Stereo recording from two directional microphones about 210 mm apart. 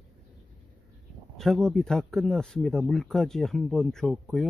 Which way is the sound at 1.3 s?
Centre (ahead or behind).